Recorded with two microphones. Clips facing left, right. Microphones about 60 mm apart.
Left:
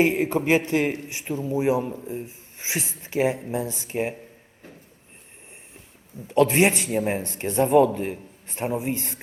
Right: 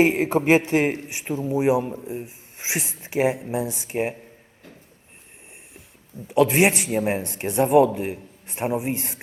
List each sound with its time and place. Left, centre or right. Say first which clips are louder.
0.0 s a man's voice: right 2 dB; right
6.2 s a man's voice: right 1 dB; centre